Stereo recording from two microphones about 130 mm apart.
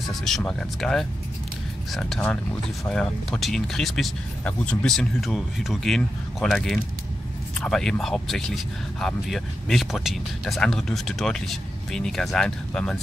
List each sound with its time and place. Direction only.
0.0 s speech: centre (ahead or behind)